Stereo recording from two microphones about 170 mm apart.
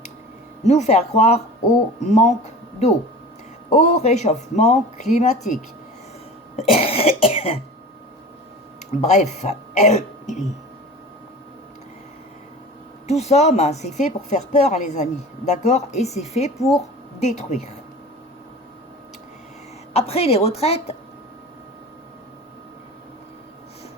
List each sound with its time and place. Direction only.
0.6 s a woman's voice: 40° left (ahead or behind)
6.6 s speech: 35° left (ahead or behind)
8.9 s speech: 40° left (ahead or behind)
13.1 s a woman's voice: 40° left (ahead or behind)
19.9 s speech: 35° left (ahead or behind)